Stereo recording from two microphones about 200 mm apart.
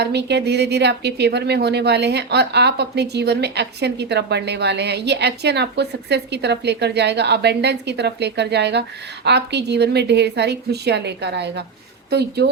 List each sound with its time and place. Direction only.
0.0 s a woman's voice: 55° right (ahead or behind)